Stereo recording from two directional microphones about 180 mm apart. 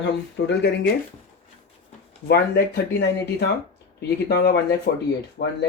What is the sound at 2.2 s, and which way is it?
Speech, 65° left (ahead or behind).